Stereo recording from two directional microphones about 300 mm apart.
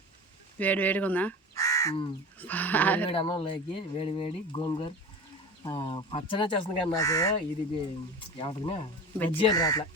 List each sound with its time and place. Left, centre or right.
0.6 s speech: centre
3.1 s speech: centre
8.4 s speech: centre
9.1 s speech: centre